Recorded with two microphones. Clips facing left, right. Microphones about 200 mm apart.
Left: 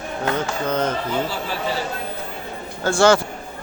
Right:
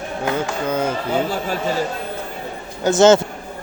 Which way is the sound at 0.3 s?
15° right (ahead or behind).